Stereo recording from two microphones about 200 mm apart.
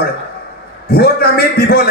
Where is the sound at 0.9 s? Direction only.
50° left (ahead or behind).